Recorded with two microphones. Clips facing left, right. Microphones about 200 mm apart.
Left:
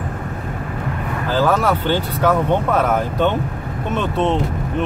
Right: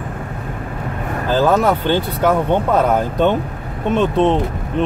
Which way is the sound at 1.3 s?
20° right (ahead or behind).